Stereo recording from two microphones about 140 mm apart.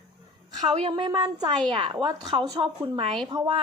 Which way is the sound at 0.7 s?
35° right (ahead or behind).